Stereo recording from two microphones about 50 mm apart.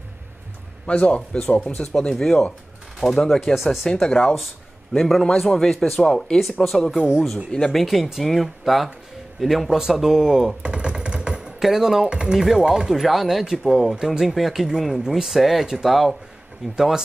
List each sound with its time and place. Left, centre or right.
0.8 s speech: left
1.9 s speech: centre
3.8 s speech: centre
6.6 s speech: centre
10.6 s vehicle: centre
11.6 s speech: centre
16.7 s speech: centre